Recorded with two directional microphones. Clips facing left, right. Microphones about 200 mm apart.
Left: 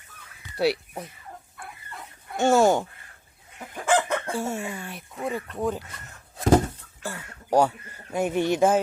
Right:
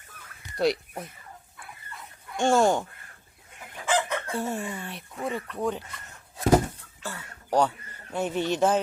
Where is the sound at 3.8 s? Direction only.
50° left (ahead or behind).